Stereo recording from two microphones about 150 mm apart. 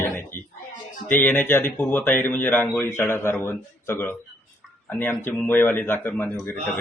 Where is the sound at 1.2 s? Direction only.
10° left (ahead or behind).